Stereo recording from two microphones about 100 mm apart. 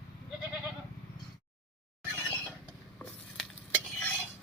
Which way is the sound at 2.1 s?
20° left (ahead or behind).